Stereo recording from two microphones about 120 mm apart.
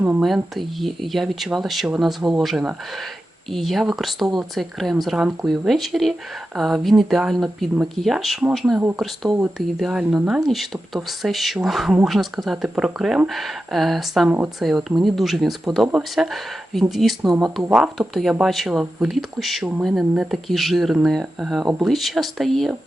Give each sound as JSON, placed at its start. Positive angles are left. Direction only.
{"t": 0.5, "sound": "speech", "side_deg": 0}
{"t": 14.3, "sound": "speech", "side_deg": -15}
{"t": 14.6, "sound": "speech", "side_deg": 0}